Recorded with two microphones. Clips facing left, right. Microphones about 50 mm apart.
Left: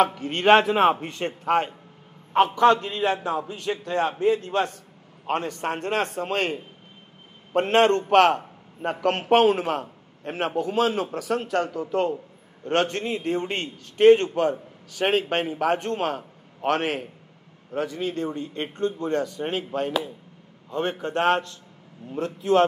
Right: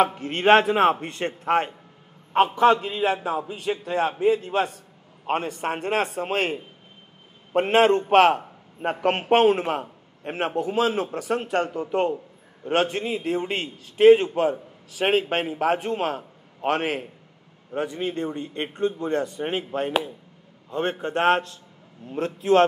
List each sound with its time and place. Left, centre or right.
0.2 s a man's voice: centre
0.7 s a man's voice: centre
11.4 s speech: right
12.6 s a man's voice: centre
21.2 s a man's voice: centre